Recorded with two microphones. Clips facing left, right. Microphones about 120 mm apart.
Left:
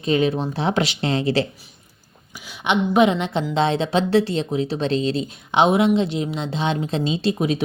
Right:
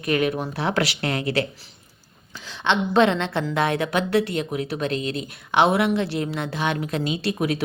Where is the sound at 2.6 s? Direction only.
15° left (ahead or behind).